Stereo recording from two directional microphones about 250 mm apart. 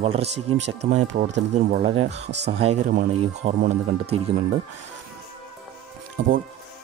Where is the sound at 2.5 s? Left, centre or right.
Right.